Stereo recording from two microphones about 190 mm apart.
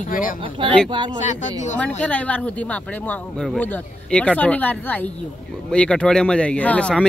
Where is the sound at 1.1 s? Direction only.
40° left (ahead or behind).